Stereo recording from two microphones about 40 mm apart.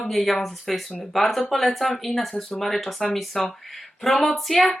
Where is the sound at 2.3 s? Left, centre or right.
Centre.